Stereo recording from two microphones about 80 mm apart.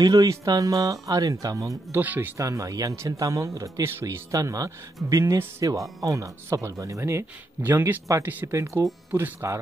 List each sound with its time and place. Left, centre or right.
0.0 s speech: right
2.0 s speech: right
2.3 s speech: right
8.5 s speech: right